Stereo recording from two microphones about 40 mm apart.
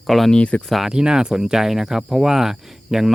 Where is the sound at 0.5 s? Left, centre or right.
Left.